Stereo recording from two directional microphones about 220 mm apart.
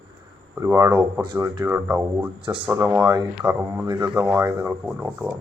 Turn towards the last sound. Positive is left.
turn(degrees=-10)  # may be behind; listen again after turning